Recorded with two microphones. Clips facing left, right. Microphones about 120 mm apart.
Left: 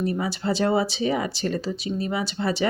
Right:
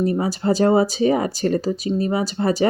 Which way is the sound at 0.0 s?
40° right (ahead or behind).